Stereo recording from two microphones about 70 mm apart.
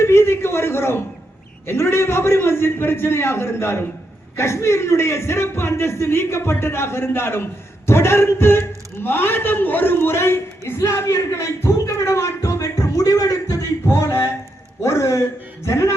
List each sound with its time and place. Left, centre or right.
0.0 s a man's voice: left
13.8 s a man's voice: left